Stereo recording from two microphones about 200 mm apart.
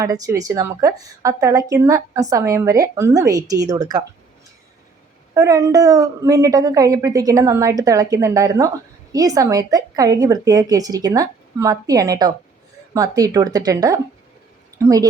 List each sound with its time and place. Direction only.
0.0 s a woman's voice: 15° right (ahead or behind)
5.3 s a woman's voice: 15° right (ahead or behind)